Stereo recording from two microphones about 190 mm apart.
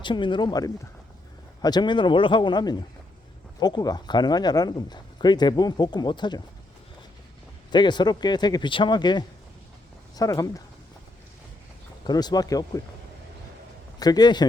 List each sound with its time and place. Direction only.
0.0 s speech: 25° left (ahead or behind)
7.7 s speech: 25° left (ahead or behind)
12.0 s speech: 20° left (ahead or behind)
14.0 s speech: 20° left (ahead or behind)